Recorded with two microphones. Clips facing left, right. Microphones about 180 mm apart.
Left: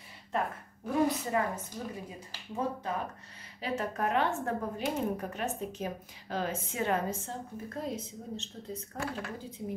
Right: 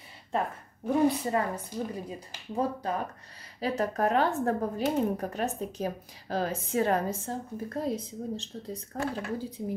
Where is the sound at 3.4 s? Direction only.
40° right (ahead or behind).